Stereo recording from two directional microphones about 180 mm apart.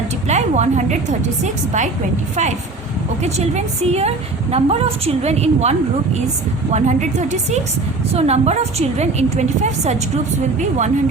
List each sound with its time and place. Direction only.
0.3 s a woman's voice: 40° right (ahead or behind)
3.2 s a woman's voice: 35° right (ahead or behind)